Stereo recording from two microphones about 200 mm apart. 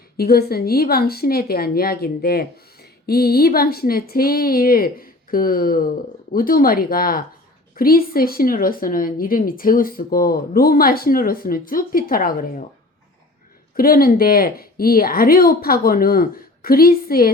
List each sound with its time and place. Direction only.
0.2 s a woman's voice: 50° left (ahead or behind)
13.7 s a woman's voice: 45° left (ahead or behind)